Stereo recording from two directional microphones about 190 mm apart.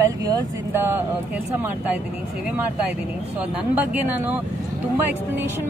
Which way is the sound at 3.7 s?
10° right (ahead or behind).